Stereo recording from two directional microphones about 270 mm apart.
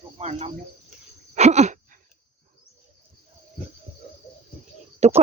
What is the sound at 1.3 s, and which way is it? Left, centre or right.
Wheeze, right.